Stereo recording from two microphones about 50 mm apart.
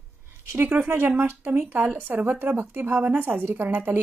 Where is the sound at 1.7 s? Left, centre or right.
Right.